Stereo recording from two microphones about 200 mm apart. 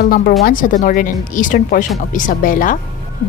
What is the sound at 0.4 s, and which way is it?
Speech, 45° left (ahead or behind).